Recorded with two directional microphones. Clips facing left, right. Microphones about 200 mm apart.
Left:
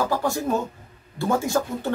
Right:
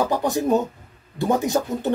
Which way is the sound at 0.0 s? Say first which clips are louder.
Right 3 dB; 20° right (ahead or behind).